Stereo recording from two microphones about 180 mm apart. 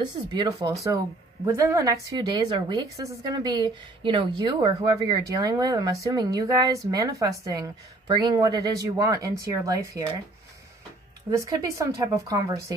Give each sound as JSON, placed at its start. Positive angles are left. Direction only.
{"t": 0.3, "sound": "a woman's voice", "side_deg": -25}
{"t": 11.2, "sound": "a woman's voice", "side_deg": -20}